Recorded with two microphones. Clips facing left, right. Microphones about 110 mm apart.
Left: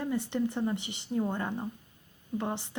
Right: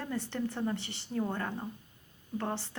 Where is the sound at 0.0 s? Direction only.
15° left (ahead or behind).